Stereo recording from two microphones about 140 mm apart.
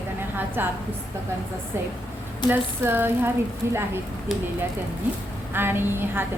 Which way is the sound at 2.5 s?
15° right (ahead or behind).